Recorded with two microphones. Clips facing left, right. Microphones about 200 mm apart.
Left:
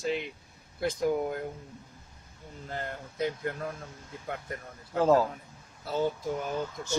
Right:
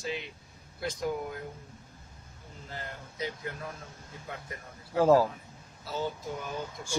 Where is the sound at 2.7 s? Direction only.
50° left (ahead or behind).